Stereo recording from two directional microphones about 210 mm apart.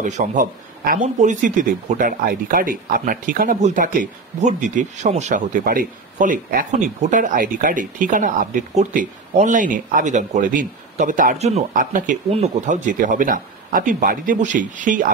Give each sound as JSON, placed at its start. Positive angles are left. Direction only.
{"t": 0.0, "sound": "speech", "side_deg": -35}